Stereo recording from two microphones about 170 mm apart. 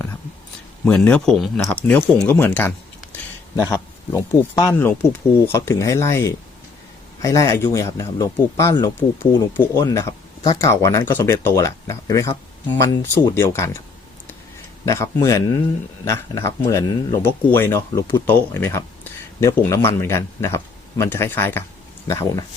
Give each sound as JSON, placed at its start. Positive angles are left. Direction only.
{"t": 0.9, "sound": "speech", "side_deg": 5}
{"t": 14.8, "sound": "speech", "side_deg": 20}